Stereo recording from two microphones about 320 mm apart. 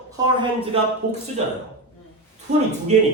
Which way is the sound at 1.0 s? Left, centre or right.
Right.